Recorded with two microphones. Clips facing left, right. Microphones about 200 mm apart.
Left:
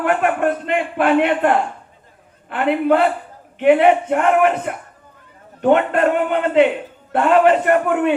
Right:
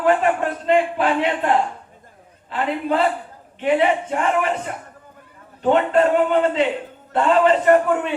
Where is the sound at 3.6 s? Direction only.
60° left (ahead or behind).